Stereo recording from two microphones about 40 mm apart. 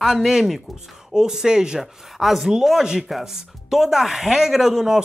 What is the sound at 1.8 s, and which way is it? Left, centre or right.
Speech, centre.